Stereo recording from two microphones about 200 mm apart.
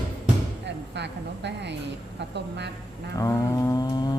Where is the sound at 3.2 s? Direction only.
15° left (ahead or behind).